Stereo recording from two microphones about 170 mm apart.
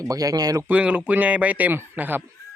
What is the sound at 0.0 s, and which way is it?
Speech, 20° right (ahead or behind).